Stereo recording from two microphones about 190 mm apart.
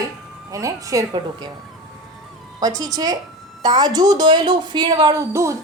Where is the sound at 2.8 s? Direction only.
20° right (ahead or behind).